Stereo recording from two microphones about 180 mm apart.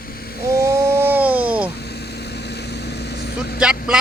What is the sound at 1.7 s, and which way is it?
Vehicle, 65° left (ahead or behind).